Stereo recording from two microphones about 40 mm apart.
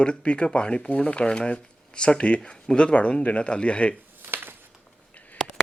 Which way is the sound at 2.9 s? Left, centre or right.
Left.